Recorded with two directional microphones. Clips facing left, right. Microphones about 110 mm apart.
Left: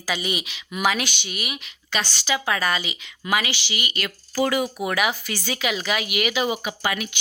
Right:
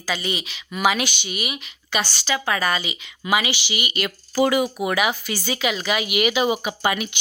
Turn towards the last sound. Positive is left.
turn(degrees=-25)  # may be behind; listen again after turning